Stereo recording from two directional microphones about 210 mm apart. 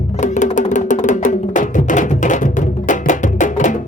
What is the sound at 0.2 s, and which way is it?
Music, 35° left (ahead or behind).